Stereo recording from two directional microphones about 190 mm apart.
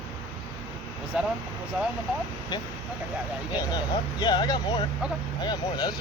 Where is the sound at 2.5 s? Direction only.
20° left (ahead or behind).